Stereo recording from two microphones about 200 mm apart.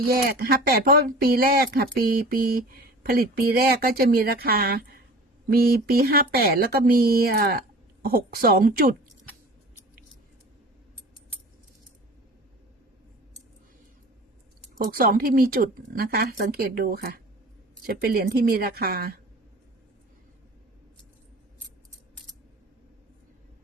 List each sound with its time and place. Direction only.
0.1 s speech: 50° right (ahead or behind)
14.8 s speech: 45° right (ahead or behind)